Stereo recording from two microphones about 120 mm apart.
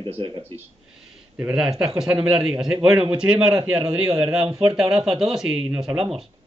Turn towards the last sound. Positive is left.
turn(degrees=-5)  # may be behind; listen again after turning